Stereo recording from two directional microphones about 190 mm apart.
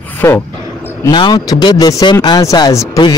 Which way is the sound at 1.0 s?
25° left (ahead or behind).